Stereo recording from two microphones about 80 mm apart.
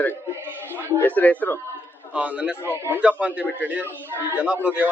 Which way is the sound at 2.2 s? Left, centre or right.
Centre.